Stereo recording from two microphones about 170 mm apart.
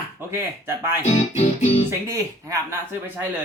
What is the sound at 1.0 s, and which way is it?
Speech, 40° left (ahead or behind).